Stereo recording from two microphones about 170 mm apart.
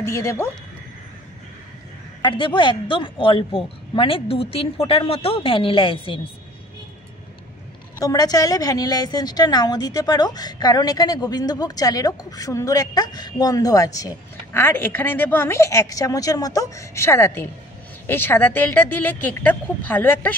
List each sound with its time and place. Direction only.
0.0 s a woman's voice: 15° left (ahead or behind)
2.2 s a man's voice: 30° left (ahead or behind)
8.0 s a woman's voice: 20° left (ahead or behind)